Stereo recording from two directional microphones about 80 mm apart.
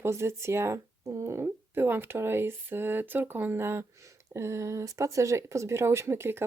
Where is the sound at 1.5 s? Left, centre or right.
Right.